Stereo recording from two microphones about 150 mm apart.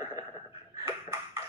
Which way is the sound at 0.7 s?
20° right (ahead or behind).